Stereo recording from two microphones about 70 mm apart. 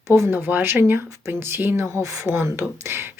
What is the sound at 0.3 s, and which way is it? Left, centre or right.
Speech, right.